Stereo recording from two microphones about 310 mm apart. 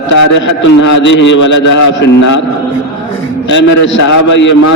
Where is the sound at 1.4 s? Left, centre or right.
Left.